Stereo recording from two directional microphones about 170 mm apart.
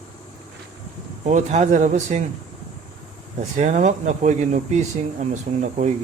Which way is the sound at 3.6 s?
45° right (ahead or behind).